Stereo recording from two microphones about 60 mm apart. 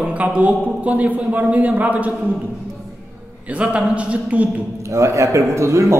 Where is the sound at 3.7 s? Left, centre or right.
Right.